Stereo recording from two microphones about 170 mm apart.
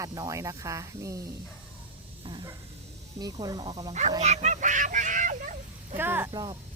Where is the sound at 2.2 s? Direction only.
25° right (ahead or behind).